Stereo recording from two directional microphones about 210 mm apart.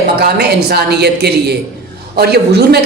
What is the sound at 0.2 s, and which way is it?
A woman's voice, 50° right (ahead or behind).